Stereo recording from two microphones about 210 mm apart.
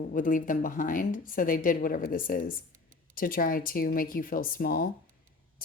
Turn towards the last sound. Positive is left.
turn(degrees=40)  # may be behind; listen again after turning